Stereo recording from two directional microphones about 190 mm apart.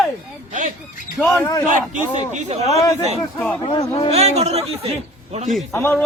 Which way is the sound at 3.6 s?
30° left (ahead or behind).